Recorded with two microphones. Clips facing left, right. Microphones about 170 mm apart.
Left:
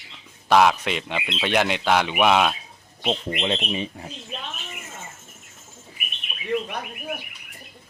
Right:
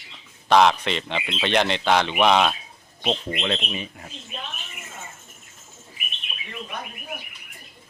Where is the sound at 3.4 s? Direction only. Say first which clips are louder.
Left 3 dB; 25° left (ahead or behind).